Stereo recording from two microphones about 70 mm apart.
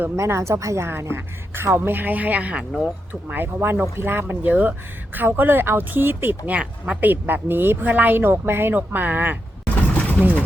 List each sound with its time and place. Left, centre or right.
0.2 s a woman's voice: right
6.5 s speech: centre
7.0 s speech: right
9.6 s a sound: left